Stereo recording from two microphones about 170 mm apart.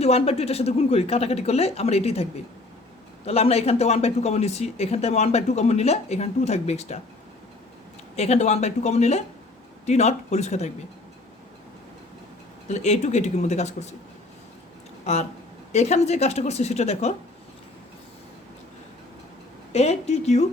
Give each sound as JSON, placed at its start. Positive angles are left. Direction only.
{"t": 0.0, "sound": "speech", "side_deg": 35}
{"t": 3.2, "sound": "speech", "side_deg": 35}
{"t": 8.1, "sound": "speech", "side_deg": 40}
{"t": 12.6, "sound": "speech", "side_deg": 40}
{"t": 15.0, "sound": "speech", "side_deg": 40}
{"t": 19.7, "sound": "speech", "side_deg": 40}